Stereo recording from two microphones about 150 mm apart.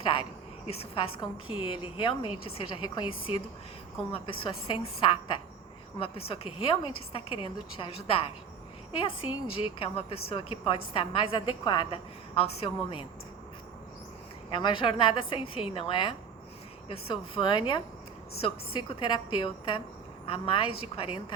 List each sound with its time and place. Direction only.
0.0 s a sound: 35° left (ahead or behind)
0.7 s a woman's voice: 40° left (ahead or behind)
9.7 s a woman's voice: 35° left (ahead or behind)
14.5 s a woman's voice: 30° left (ahead or behind)